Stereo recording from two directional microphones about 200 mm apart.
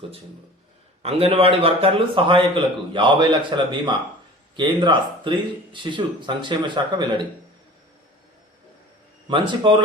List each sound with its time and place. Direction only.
1.0 s a man's voice: 30° right (ahead or behind)
9.2 s a man's voice: 25° right (ahead or behind)